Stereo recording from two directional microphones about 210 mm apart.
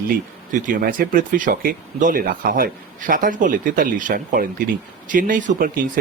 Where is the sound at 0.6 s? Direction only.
40° right (ahead or behind).